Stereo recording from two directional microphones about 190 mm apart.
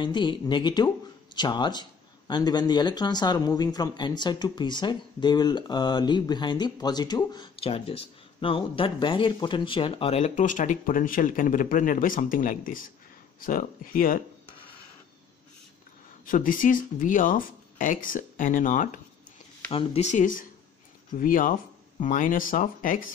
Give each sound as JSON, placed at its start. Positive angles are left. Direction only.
{"t": 0.0, "sound": "speech", "side_deg": 25}
{"t": 16.3, "sound": "speech", "side_deg": 45}
{"t": 19.7, "sound": "speech", "side_deg": 35}